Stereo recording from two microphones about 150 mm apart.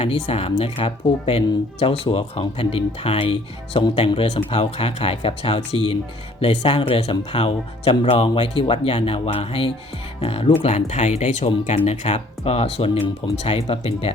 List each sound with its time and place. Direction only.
0.0 s speech: 40° left (ahead or behind)